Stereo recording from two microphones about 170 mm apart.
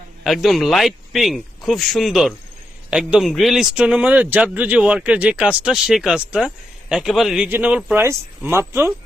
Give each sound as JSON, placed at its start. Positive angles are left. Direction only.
{"t": 0.3, "sound": "a man's voice", "side_deg": 0}